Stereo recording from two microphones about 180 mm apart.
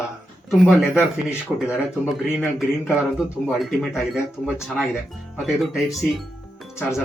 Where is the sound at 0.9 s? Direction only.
10° left (ahead or behind).